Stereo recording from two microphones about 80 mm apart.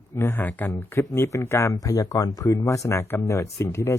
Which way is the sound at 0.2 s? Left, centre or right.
Left.